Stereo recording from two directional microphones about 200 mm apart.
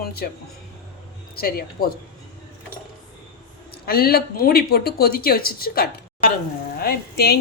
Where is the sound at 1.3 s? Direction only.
50° left (ahead or behind).